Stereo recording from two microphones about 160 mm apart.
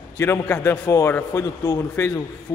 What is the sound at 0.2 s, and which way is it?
A man's voice, 15° left (ahead or behind).